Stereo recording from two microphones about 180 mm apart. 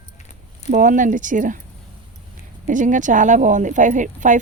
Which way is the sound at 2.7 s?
45° right (ahead or behind).